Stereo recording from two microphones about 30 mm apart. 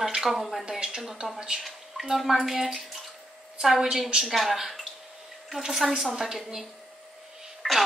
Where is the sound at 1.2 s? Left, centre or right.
Right.